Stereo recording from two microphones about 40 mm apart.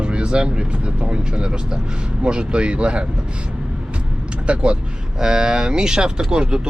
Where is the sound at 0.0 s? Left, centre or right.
Right.